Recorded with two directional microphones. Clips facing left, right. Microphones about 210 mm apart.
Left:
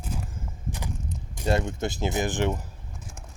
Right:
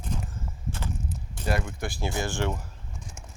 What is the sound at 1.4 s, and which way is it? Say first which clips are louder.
Speech: left 4 dB; 25° left (ahead or behind).